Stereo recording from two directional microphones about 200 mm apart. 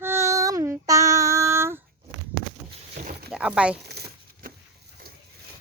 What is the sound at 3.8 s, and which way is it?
Crumpling, 55° right (ahead or behind).